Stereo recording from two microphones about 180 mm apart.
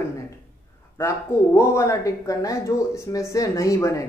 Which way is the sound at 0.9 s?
15° left (ahead or behind).